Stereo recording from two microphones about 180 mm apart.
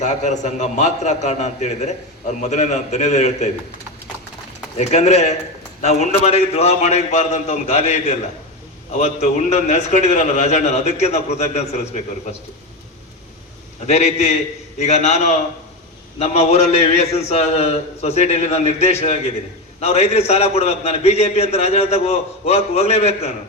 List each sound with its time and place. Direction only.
0.0 s a man's voice: 40° left (ahead or behind)
4.8 s a man's voice: 40° left (ahead or behind)
13.8 s a man's voice: 40° left (ahead or behind)